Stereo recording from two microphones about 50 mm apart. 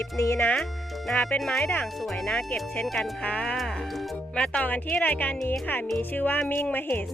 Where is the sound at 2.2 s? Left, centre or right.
Left.